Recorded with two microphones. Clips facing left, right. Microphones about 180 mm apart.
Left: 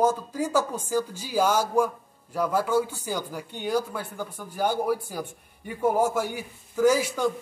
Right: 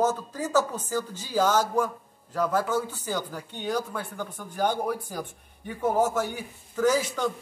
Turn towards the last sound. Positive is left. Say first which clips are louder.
# left 2 dB
turn(degrees=10)  # may be behind; listen again after turning